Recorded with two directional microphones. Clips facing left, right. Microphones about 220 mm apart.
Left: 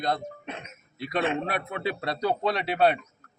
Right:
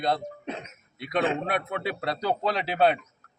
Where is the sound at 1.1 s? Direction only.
5° left (ahead or behind).